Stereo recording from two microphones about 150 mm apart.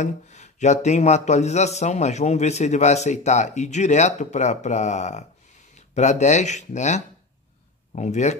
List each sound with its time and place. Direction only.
0.0 s speech: 50° left (ahead or behind)